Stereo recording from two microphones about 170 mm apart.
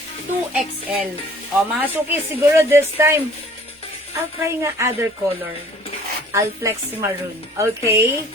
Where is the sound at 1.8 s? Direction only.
10° right (ahead or behind).